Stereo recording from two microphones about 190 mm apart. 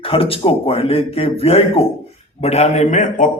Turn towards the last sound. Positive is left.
turn(degrees=40)  # may be behind; listen again after turning